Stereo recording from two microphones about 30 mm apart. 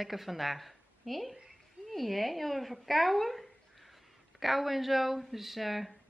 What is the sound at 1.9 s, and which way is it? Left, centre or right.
Speech, centre.